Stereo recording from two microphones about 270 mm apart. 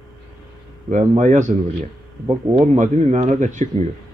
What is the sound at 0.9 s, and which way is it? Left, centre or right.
A man's voice, right.